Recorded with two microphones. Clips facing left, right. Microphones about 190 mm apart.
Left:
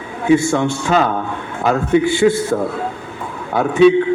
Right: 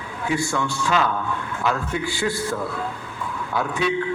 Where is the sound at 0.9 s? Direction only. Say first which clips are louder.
Left 5 dB; 45° left (ahead or behind).